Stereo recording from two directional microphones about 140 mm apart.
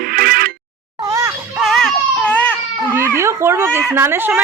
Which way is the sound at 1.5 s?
Centre (ahead or behind).